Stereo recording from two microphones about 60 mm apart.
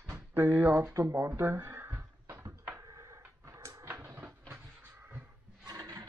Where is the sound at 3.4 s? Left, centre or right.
Right.